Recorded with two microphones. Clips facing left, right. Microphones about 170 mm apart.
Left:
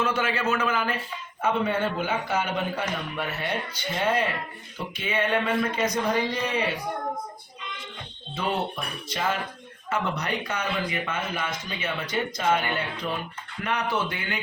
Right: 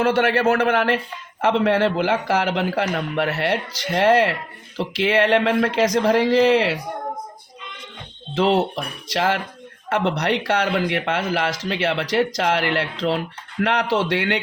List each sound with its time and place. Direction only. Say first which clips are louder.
0.0 s a man's voice: right 8 dB; 70° right (ahead or behind)
1.4 s a man's voice: right 7 dB; 85° right
8.4 s speech: right 9 dB; 90° right